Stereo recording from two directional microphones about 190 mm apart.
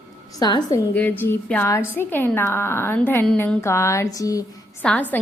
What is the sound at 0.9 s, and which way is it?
A woman's voice, 10° left (ahead or behind).